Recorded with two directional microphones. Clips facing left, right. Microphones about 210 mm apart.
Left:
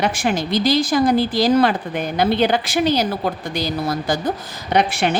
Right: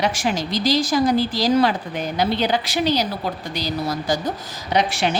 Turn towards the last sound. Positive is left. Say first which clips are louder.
# left 2 dB
turn(degrees=55)  # may be behind; listen again after turning